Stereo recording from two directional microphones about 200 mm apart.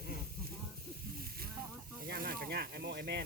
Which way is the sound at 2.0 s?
45° right (ahead or behind).